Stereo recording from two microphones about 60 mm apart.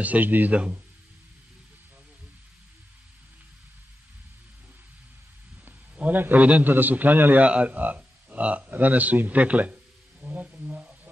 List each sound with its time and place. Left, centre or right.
0.0 s a man's voice: right
5.7 s a man's voice: right
10.2 s a sound: right